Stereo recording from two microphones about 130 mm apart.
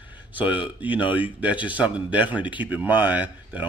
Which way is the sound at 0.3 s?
10° right (ahead or behind).